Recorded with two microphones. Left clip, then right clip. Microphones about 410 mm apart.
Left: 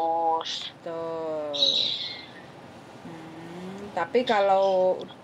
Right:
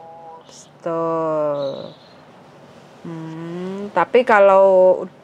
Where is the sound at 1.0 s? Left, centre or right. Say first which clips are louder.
Right 11 dB; right.